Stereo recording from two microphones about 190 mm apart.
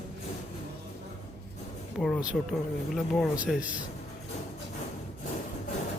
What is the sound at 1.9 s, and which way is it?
A man's voice, centre (ahead or behind).